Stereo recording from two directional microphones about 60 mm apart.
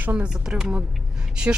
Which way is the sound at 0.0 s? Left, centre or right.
Right.